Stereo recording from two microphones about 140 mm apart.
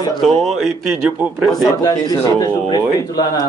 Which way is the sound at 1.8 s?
25° left (ahead or behind).